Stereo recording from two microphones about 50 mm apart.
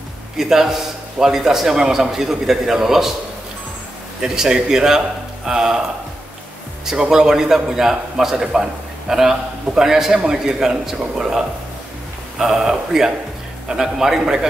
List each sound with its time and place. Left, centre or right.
0.4 s a man's voice: centre
4.2 s a man's voice: centre
6.9 s a man's voice: centre